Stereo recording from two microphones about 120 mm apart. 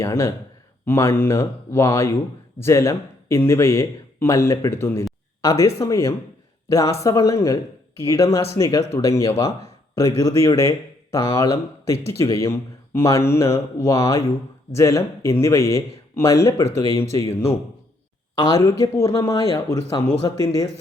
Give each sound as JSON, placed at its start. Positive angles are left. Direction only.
{"t": 0.0, "sound": "a man's voice", "side_deg": 20}